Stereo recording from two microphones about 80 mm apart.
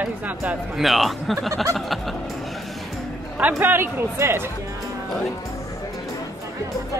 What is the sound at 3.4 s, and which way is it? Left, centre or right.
A man's voice, right.